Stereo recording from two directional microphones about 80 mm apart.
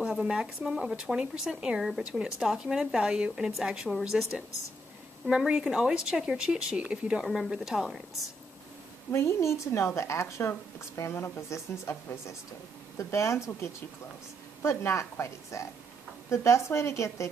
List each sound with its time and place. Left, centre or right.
0.0 s speech: centre
7.2 s a woman's voice: centre
9.1 s a woman's voice: left